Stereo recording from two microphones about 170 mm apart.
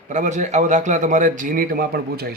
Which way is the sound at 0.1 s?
45° right (ahead or behind).